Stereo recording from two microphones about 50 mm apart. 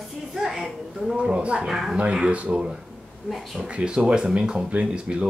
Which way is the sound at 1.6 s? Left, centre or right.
Centre.